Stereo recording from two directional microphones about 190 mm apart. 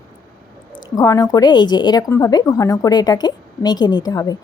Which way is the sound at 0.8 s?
20° left (ahead or behind).